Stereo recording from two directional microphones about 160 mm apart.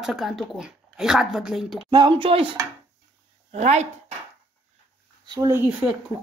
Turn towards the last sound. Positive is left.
turn(degrees=-15)  # may be behind; listen again after turning